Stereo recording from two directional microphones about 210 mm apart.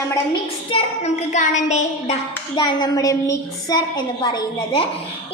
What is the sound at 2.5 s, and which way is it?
A woman's voice, 20° left (ahead or behind).